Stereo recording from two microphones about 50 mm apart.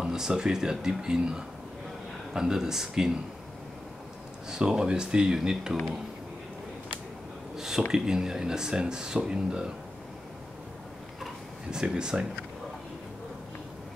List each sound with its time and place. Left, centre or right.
0.0 s speech: centre
4.5 s speech: centre
7.5 s speech: centre
11.7 s speech: centre